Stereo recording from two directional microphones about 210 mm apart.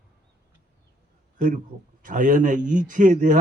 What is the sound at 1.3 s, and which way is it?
A man's voice, 40° right (ahead or behind).